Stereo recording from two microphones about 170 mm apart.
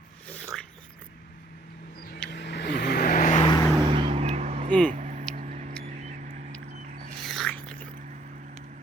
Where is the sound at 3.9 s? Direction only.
35° right (ahead or behind).